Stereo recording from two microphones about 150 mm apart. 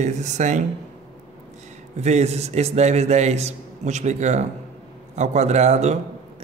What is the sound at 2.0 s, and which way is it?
Speech, 45° right (ahead or behind).